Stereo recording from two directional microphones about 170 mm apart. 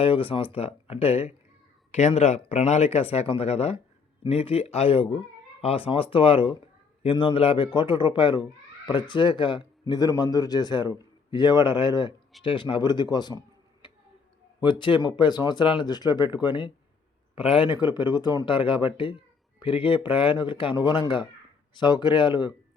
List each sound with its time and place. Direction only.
0.0 s a man's voice: 30° left (ahead or behind)
14.6 s a man's voice: 30° left (ahead or behind)